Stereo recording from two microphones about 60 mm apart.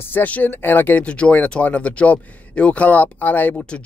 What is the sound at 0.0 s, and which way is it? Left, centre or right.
Speech, left.